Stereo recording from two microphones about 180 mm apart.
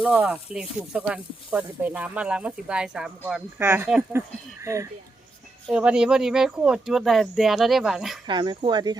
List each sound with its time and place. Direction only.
0.0 s speech: 5° right (ahead or behind)
5.6 s speech: 5° right (ahead or behind)
8.3 s speech: 25° right (ahead or behind)